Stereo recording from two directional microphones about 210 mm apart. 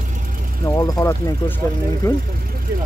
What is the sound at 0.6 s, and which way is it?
Speech, 15° left (ahead or behind).